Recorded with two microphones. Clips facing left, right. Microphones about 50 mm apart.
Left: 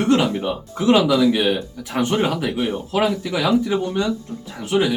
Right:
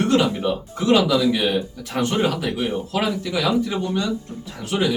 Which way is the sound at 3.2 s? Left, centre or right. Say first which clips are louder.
Left 1 dB; centre.